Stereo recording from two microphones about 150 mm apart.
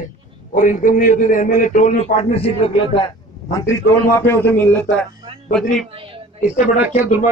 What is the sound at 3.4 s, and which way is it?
A man's voice, 20° left (ahead or behind).